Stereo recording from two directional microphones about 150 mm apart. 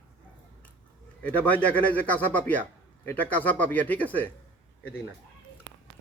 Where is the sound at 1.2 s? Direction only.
10° left (ahead or behind).